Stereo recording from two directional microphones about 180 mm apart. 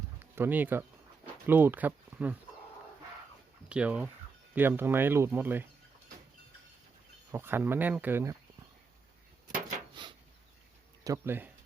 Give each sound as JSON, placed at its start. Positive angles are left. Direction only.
{"t": 0.3, "sound": "speech", "side_deg": -10}
{"t": 3.7, "sound": "speech", "side_deg": -5}
{"t": 7.3, "sound": "speech", "side_deg": -15}
{"t": 9.9, "sound": "a sound", "side_deg": -25}
{"t": 11.0, "sound": "speech", "side_deg": -15}